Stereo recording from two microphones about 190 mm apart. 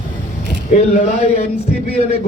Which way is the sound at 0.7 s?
35° left (ahead or behind).